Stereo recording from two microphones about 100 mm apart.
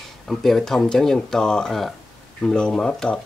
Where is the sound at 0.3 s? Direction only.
Centre (ahead or behind).